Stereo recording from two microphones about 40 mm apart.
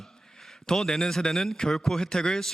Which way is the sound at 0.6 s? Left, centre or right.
Centre.